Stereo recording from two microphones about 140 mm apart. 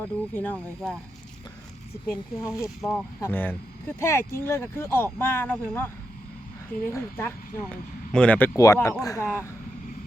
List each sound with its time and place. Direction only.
0.3 s speech: 10° left (ahead or behind)
2.0 s speech: 5° right (ahead or behind)
2.8 s speech: 20° left (ahead or behind)
8.5 s speech: 20° left (ahead or behind)